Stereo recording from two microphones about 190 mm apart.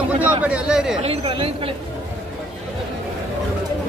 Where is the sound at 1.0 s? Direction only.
30° right (ahead or behind).